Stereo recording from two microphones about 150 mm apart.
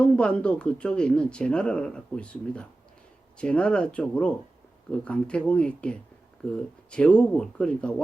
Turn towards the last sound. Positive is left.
turn(degrees=10)  # may be behind; listen again after turning